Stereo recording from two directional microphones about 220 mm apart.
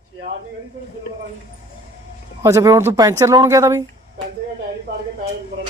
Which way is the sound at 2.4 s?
15° right (ahead or behind).